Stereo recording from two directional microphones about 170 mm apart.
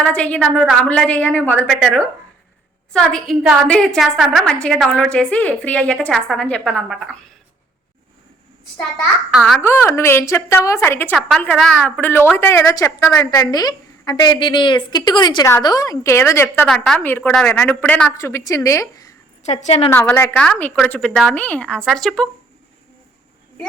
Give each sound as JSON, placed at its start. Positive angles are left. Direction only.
{"t": 0.0, "sound": "a woman's voice", "side_deg": 5}
{"t": 9.3, "sound": "a woman's voice", "side_deg": 0}
{"t": 9.6, "sound": "a woman's voice", "side_deg": 15}
{"t": 16.6, "sound": "a woman's voice", "side_deg": 0}
{"t": 19.4, "sound": "a woman's voice", "side_deg": 40}
{"t": 19.9, "sound": "a woman's voice", "side_deg": 10}